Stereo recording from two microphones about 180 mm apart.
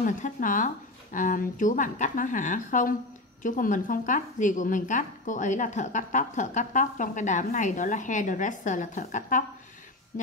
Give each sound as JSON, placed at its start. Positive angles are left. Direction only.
{"t": 0.0, "sound": "a woman's voice", "side_deg": 45}